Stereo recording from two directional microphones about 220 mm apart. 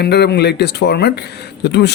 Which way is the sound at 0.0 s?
50° left (ahead or behind).